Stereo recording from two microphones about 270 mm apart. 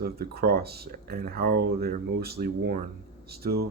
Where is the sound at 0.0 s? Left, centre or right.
Right.